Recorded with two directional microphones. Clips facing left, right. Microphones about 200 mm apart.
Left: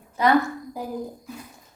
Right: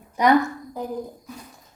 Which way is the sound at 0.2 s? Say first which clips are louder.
Right 2 dB; 15° right (ahead or behind).